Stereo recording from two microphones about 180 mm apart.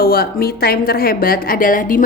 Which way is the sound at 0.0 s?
55° left (ahead or behind).